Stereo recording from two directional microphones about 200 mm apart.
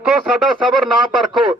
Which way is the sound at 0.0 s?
5° right (ahead or behind).